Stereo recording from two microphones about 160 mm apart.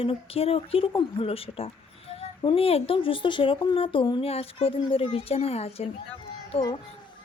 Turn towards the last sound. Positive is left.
turn(degrees=40)  # may be behind; listen again after turning